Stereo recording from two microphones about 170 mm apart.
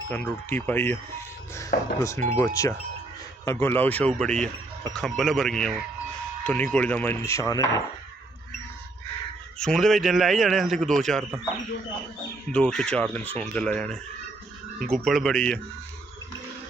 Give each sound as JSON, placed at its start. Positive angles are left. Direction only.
{"t": 0.1, "sound": "speech", "side_deg": 10}
{"t": 1.7, "sound": "speech", "side_deg": 60}
{"t": 2.0, "sound": "a man's voice", "side_deg": 15}
{"t": 9.6, "sound": "a man's voice", "side_deg": 5}
{"t": 12.5, "sound": "a man's voice", "side_deg": 5}